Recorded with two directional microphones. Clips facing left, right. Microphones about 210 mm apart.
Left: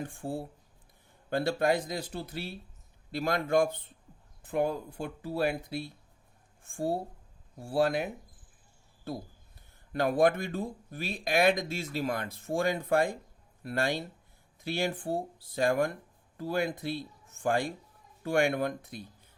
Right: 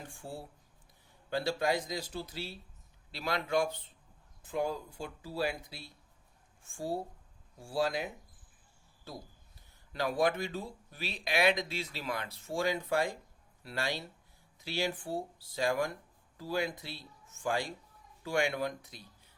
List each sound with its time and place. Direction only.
0.0 s speech: 55° left (ahead or behind)